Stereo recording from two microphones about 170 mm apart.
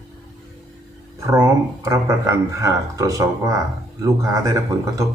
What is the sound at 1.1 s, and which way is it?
Speech, 20° right (ahead or behind).